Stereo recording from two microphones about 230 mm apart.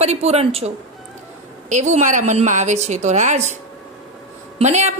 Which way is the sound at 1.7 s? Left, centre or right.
Right.